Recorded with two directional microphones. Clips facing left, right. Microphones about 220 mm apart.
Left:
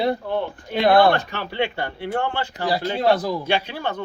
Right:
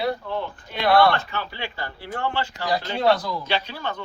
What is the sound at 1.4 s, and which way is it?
A man's voice, 65° left (ahead or behind).